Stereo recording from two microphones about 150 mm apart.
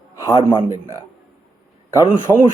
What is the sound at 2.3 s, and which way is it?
Speech, 20° left (ahead or behind).